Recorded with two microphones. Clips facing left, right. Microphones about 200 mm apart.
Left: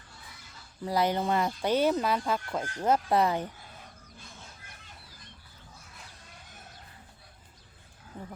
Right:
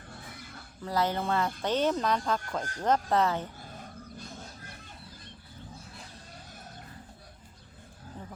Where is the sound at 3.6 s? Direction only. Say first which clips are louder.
Right 6 dB; 45° right (ahead or behind).